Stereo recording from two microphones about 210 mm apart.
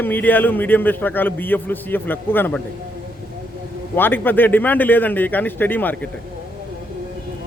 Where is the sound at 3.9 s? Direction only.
10° left (ahead or behind).